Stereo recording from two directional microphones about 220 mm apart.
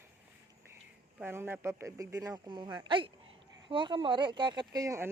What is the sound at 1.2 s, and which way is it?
Speech, 10° right (ahead or behind).